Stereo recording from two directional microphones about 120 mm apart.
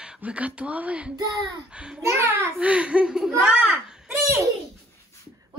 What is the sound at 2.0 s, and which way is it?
Speech, 25° right (ahead or behind).